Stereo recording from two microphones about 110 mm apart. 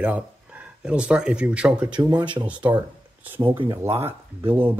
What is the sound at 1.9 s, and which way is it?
Speech, 40° right (ahead or behind).